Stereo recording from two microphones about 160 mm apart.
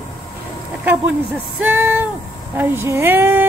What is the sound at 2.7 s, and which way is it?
Female singing, 15° right (ahead or behind).